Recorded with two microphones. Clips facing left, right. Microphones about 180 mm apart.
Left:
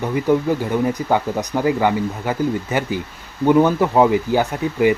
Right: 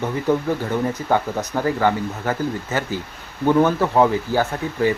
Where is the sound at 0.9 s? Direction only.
15° left (ahead or behind).